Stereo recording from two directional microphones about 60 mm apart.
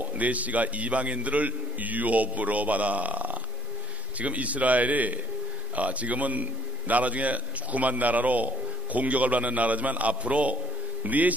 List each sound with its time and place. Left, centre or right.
0.0 s a man's voice: right